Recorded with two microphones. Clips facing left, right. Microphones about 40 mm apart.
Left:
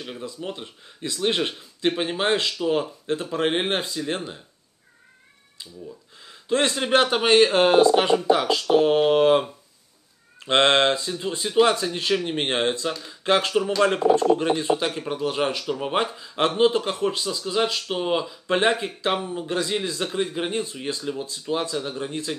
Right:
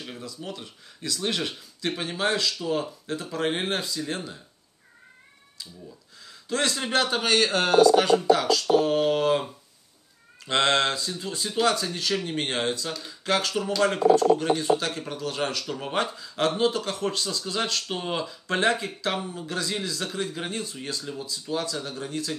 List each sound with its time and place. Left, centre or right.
0.2 s speech: left
6.2 s speech: left